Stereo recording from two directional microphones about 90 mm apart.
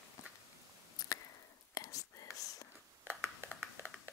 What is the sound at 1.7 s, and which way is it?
Whispering, 40° left (ahead or behind).